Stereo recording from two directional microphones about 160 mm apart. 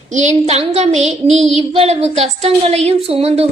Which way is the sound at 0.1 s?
45° right (ahead or behind).